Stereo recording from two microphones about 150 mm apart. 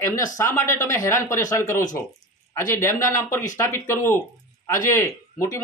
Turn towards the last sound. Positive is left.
turn(degrees=20)  # may be behind; listen again after turning